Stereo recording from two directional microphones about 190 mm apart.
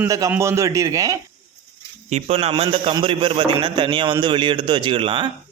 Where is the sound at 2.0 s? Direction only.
35° right (ahead or behind).